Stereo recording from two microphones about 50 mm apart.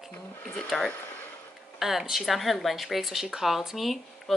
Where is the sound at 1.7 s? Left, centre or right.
Centre.